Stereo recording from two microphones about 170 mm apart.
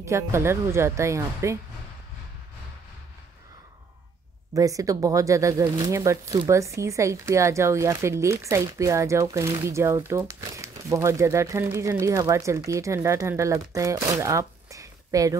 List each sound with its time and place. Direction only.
0.0 s speech: 15° right (ahead or behind)
4.6 s speech: 20° right (ahead or behind)